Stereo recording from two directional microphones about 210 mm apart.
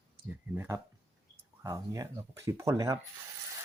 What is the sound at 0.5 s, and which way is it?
Speech, 15° right (ahead or behind).